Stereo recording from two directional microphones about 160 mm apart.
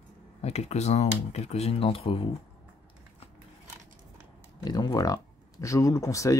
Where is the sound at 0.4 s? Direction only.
40° left (ahead or behind).